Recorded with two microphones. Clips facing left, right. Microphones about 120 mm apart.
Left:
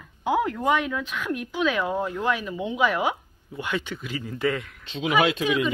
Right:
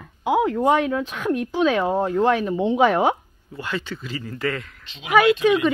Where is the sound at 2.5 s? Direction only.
30° right (ahead or behind).